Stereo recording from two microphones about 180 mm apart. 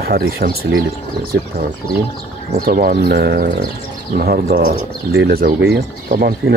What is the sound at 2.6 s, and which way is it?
Speech, 60° right (ahead or behind).